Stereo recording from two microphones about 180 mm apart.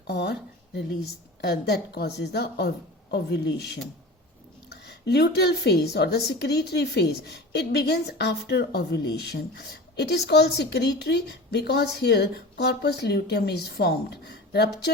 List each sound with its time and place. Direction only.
0.1 s a woman's voice: 65° left (ahead or behind)
4.7 s a woman's voice: 65° left (ahead or behind)